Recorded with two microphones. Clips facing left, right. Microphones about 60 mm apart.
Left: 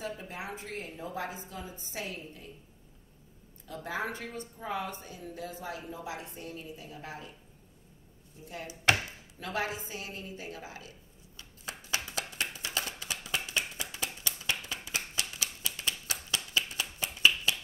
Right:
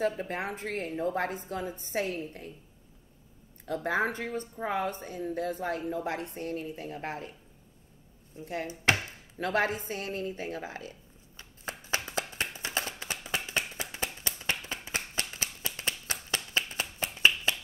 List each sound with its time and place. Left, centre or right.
0.0 s speech: right
3.6 s speech: right
8.4 s a woman's voice: right
11.9 s a sound: right
16.1 s finger snapping: right
16.6 s clapping: right
17.5 s finger snapping: right